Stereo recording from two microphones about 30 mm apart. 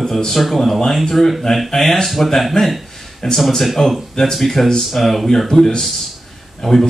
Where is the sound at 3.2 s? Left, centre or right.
Left.